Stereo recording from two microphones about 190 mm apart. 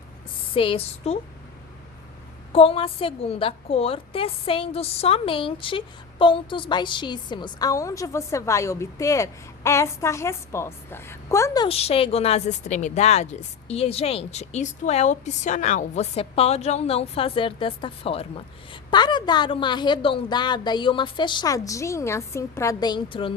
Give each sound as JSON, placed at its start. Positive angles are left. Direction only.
{"t": 0.5, "sound": "a woman's voice", "side_deg": 30}
{"t": 2.5, "sound": "a woman's voice", "side_deg": 30}
{"t": 11.7, "sound": "a woman's voice", "side_deg": 30}